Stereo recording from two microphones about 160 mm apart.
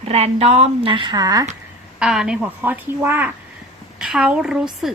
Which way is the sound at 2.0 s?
5° right (ahead or behind).